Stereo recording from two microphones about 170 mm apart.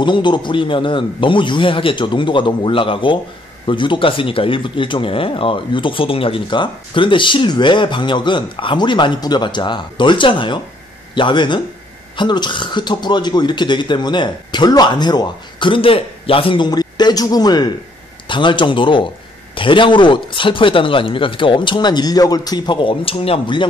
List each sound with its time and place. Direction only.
0.0 s speech: 25° left (ahead or behind)